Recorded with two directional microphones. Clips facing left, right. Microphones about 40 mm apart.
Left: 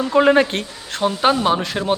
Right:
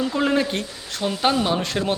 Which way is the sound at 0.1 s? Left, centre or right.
Left.